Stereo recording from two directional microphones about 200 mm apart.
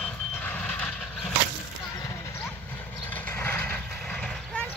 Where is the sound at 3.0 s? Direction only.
5° left (ahead or behind).